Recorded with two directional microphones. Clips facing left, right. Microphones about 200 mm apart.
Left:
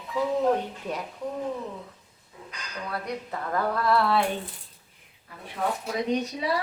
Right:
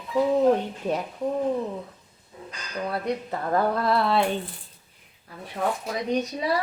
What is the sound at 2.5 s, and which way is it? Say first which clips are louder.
Speech: right 5 dB; 30° right (ahead or behind).